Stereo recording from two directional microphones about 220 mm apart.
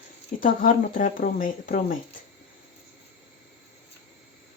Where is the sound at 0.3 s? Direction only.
40° left (ahead or behind).